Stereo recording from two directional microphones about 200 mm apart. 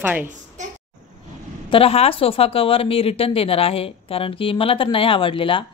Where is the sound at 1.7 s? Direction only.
30° left (ahead or behind).